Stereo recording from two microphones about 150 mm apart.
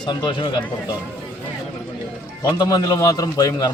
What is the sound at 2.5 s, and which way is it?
A man's voice, 25° left (ahead or behind).